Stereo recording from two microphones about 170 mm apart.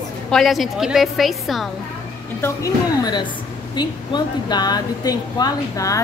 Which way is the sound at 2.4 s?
20° left (ahead or behind).